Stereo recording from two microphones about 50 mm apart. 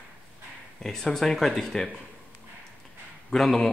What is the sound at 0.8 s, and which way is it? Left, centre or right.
A man's voice, centre.